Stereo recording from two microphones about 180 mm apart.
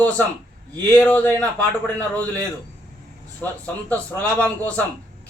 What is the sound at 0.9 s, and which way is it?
A man's voice, 10° left (ahead or behind).